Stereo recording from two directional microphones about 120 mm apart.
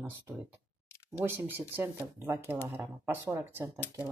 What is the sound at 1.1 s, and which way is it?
Speech, 20° right (ahead or behind).